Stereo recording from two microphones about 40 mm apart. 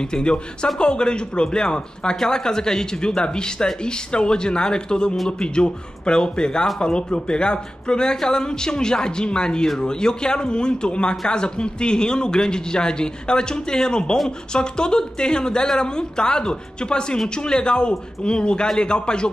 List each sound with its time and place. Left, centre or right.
0.0 s speech: left